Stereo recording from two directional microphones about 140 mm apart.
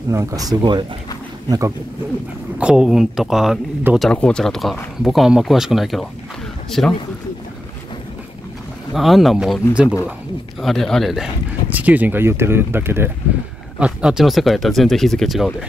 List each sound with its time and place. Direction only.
0.1 s speech: 20° right (ahead or behind)
2.6 s speech: 5° right (ahead or behind)
4.1 s speech: 5° left (ahead or behind)
8.9 s speech: centre (ahead or behind)
11.7 s speech: 10° right (ahead or behind)